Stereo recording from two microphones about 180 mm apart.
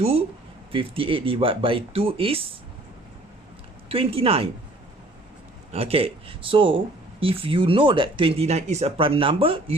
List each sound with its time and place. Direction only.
0.0 s speech: 35° right (ahead or behind)
3.8 s speech: 30° right (ahead or behind)
5.7 s speech: 35° right (ahead or behind)